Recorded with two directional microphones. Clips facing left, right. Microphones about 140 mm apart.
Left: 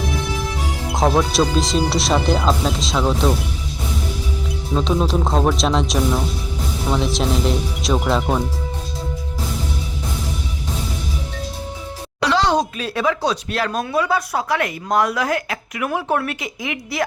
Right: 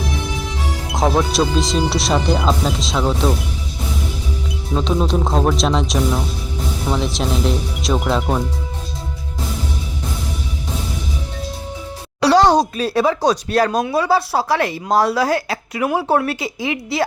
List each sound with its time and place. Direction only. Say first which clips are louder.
0.9 s speech: even; centre (ahead or behind)
4.7 s speech: right 1 dB; centre (ahead or behind)
12.2 s speech: right 5 dB; 40° right (ahead or behind)